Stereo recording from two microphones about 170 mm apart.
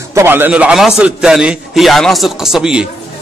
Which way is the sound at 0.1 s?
15° right (ahead or behind).